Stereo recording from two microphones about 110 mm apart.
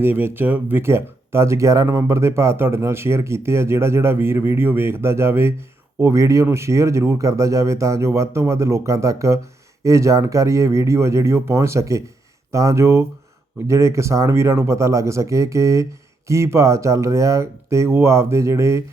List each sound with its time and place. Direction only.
0.0 s speech: 20° right (ahead or behind)